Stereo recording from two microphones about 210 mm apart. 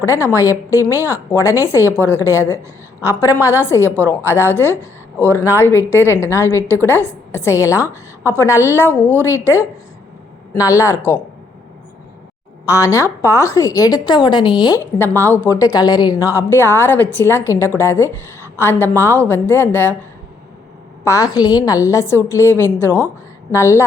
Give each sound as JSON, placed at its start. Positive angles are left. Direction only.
{"t": 0.3, "sound": "a woman's voice", "side_deg": 15}
{"t": 1.8, "sound": "speech", "side_deg": -15}
{"t": 2.0, "sound": "a woman's voice", "side_deg": 10}
{"t": 12.6, "sound": "a woman's voice", "side_deg": 15}
{"t": 21.0, "sound": "a woman's voice", "side_deg": 15}